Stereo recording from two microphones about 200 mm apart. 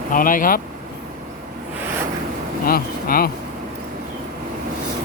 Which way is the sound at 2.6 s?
45° left (ahead or behind).